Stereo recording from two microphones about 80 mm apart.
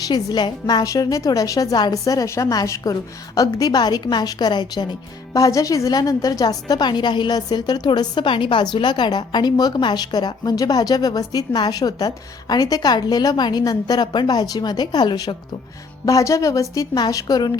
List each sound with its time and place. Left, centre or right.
0.1 s a woman's voice: left
8.7 s a woman's voice: left
16.0 s a woman's voice: left